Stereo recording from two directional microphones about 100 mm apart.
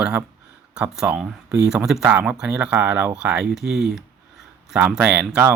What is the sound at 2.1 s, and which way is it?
Speech, 20° right (ahead or behind).